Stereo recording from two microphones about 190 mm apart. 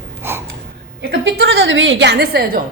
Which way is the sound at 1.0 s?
60° right (ahead or behind).